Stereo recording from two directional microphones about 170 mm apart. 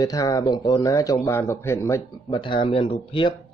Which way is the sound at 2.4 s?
30° left (ahead or behind).